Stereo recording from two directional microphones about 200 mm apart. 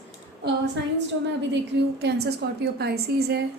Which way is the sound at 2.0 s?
55° right (ahead or behind).